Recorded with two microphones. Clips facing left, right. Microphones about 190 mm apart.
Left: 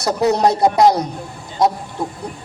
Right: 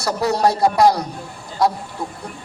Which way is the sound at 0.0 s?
20° left (ahead or behind).